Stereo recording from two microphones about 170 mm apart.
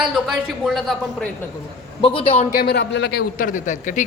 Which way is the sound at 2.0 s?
35° left (ahead or behind).